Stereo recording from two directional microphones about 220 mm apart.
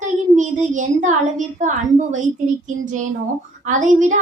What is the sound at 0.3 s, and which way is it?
A child's voice, 35° right (ahead or behind).